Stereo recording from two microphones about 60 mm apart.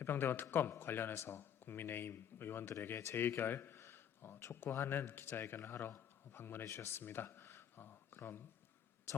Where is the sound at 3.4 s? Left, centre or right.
Left.